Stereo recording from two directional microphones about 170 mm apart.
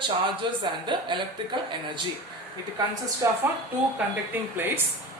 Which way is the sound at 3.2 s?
20° right (ahead or behind).